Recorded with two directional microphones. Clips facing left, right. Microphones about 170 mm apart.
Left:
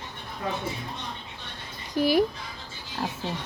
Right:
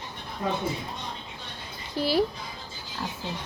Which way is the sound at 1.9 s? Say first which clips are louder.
Left 3 dB; 15° left (ahead or behind).